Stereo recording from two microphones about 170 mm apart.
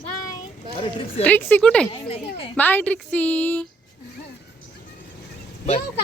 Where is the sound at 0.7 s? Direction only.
30° left (ahead or behind).